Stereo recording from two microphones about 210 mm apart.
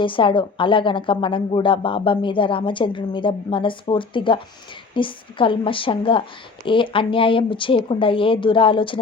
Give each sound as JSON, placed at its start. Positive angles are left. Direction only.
{"t": 0.0, "sound": "a woman's voice", "side_deg": 25}